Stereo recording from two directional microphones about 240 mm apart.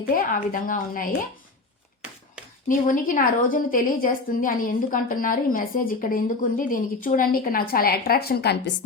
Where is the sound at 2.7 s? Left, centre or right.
Left.